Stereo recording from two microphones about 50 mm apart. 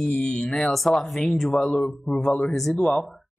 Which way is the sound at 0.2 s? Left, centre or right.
Centre.